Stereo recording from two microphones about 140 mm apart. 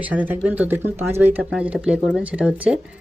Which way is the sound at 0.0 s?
10° right (ahead or behind).